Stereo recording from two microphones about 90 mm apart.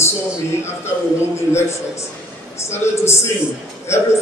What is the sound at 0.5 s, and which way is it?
A man's voice, 30° left (ahead or behind).